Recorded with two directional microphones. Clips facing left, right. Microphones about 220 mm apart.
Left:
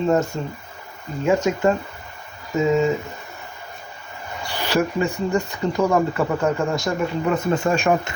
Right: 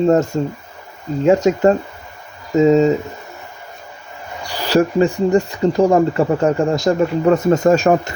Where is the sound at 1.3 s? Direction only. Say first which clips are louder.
Right 5 dB; 35° right (ahead or behind).